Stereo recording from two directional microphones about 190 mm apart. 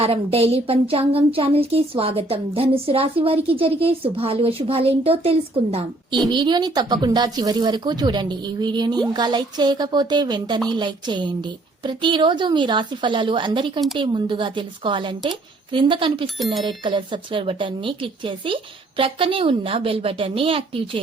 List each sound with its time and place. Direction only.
0.0 s speech: 30° right (ahead or behind)